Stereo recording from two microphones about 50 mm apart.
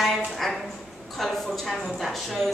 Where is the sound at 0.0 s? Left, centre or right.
Centre.